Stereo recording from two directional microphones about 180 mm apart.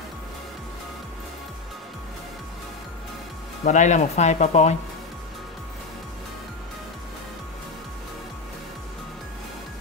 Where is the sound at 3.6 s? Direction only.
40° left (ahead or behind).